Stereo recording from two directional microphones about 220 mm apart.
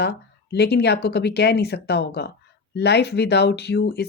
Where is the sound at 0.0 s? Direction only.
50° left (ahead or behind).